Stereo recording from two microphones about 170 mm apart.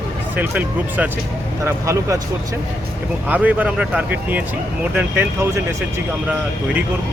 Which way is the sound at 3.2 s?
10° right (ahead or behind).